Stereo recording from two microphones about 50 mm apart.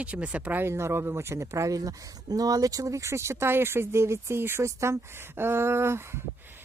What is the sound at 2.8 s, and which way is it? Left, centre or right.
Speech, right.